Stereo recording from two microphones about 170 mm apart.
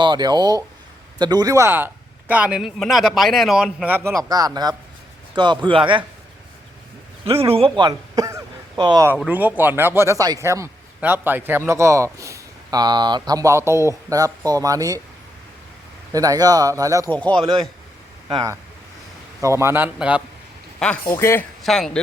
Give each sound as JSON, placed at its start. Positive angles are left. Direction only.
{"t": 0.0, "sound": "speech", "side_deg": -25}
{"t": 7.4, "sound": "speech", "side_deg": -35}
{"t": 9.1, "sound": "speech", "side_deg": -5}
{"t": 16.1, "sound": "speech", "side_deg": -20}
{"t": 19.4, "sound": "speech", "side_deg": -15}
{"t": 20.7, "sound": "speech", "side_deg": 5}
{"t": 21.6, "sound": "speech", "side_deg": 0}